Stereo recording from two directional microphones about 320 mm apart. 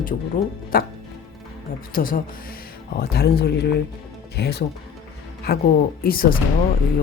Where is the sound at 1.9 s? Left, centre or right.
Left.